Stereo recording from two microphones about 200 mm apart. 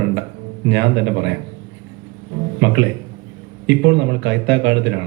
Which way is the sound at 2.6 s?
60° right (ahead or behind).